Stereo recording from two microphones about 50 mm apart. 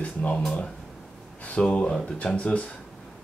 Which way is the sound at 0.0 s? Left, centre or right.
Left.